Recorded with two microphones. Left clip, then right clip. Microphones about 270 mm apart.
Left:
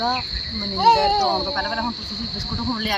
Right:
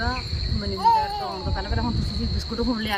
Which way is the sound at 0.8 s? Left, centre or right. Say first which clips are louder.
Left 4 dB; left.